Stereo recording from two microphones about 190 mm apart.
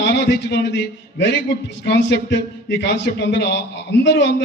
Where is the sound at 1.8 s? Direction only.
65° left (ahead or behind).